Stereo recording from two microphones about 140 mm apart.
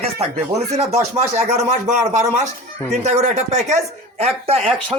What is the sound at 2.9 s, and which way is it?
Speech, 55° right (ahead or behind).